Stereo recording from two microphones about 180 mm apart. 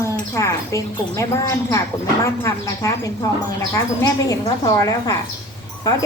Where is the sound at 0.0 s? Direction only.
15° left (ahead or behind).